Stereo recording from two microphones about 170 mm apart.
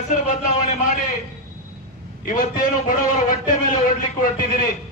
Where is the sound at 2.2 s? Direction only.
50° left (ahead or behind).